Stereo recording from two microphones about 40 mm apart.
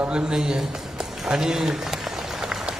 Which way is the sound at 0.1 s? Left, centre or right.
Right.